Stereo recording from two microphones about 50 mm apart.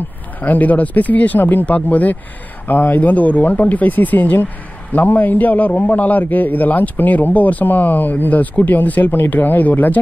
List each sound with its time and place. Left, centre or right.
0.4 s a man's voice: left